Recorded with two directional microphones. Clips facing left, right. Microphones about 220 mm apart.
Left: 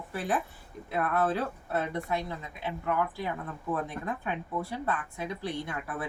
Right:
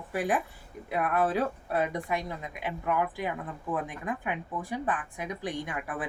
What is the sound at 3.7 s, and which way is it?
Speech, 15° right (ahead or behind).